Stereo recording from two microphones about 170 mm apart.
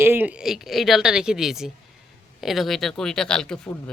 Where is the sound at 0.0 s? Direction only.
10° right (ahead or behind).